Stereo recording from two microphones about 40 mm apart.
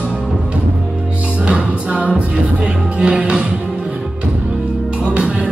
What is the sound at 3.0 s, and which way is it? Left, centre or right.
Music, right.